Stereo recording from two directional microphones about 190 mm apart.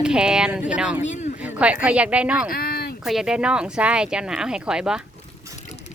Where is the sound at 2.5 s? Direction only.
50° left (ahead or behind).